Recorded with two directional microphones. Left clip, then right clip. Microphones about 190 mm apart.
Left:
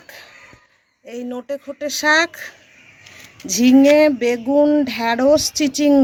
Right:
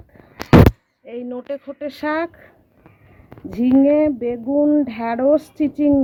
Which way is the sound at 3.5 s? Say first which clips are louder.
Left 3 dB; 10° left (ahead or behind).